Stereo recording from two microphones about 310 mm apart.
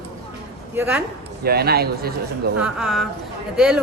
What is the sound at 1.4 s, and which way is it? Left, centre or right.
Speech, right.